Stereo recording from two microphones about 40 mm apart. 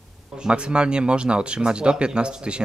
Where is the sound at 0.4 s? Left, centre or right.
Right.